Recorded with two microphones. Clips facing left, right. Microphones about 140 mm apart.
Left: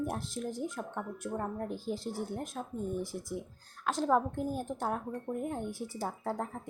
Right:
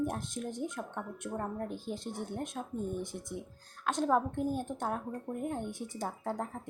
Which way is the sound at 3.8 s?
5° left (ahead or behind).